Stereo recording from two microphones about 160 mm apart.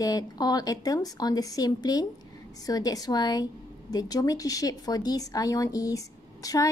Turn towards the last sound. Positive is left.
turn(degrees=20)  # may be behind; listen again after turning